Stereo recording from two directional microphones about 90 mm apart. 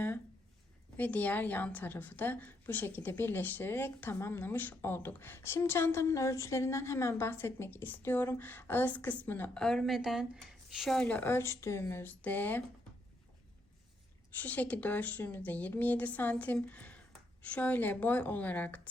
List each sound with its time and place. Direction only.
0.9 s a woman's voice: 20° left (ahead or behind)
9.6 s speech: 5° left (ahead or behind)
11.0 s a woman's voice: 20° left (ahead or behind)
14.3 s a woman's voice: 20° left (ahead or behind)